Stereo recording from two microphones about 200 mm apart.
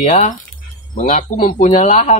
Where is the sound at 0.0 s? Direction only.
35° left (ahead or behind).